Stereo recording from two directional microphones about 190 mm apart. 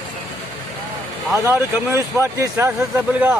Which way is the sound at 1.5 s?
15° right (ahead or behind).